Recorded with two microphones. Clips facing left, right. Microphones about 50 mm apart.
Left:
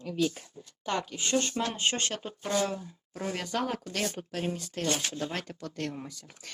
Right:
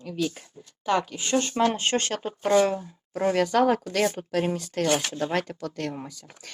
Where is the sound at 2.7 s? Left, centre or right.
Right.